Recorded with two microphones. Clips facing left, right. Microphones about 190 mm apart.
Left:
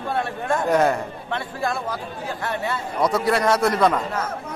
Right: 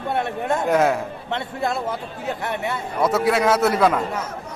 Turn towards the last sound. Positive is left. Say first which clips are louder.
# right 1 dB
turn(degrees=-5)  # may be behind; listen again after turning